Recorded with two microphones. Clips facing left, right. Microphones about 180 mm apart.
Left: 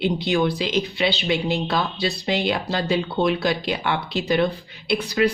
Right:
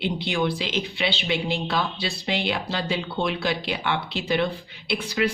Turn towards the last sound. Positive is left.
turn(degrees=40)  # may be behind; listen again after turning